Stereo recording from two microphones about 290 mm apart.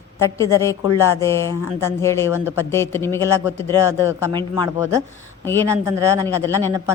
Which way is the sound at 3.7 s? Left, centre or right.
Centre.